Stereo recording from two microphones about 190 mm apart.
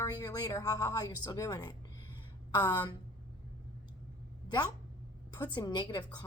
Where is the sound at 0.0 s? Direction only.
20° left (ahead or behind).